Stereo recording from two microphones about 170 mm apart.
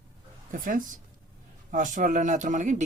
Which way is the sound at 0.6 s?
50° right (ahead or behind).